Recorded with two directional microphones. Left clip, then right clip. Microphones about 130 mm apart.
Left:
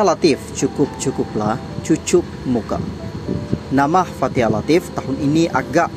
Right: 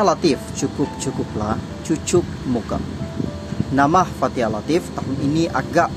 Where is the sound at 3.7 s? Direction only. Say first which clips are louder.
Even; 30° left (ahead or behind).